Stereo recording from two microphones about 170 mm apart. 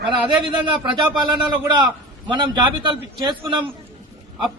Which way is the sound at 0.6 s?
30° right (ahead or behind).